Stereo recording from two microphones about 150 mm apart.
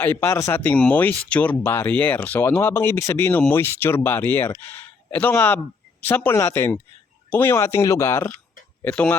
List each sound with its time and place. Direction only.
0.0 s speech: 15° left (ahead or behind)